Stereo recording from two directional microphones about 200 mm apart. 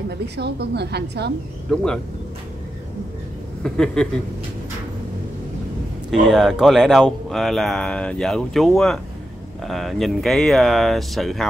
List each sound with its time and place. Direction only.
0.4 s a woman's voice: 55° right (ahead or behind)
1.7 s speech: centre (ahead or behind)
3.6 s speech: 5° left (ahead or behind)
6.2 s speech: centre (ahead or behind)